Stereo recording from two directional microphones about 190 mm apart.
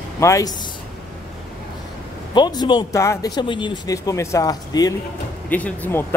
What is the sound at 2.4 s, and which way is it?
Speech, 20° left (ahead or behind).